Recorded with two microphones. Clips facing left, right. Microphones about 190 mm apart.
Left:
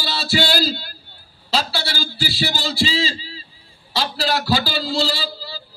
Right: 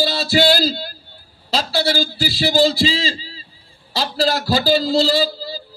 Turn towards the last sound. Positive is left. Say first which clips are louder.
# right 8 dB
turn(degrees=-45)  # may be behind; listen again after turning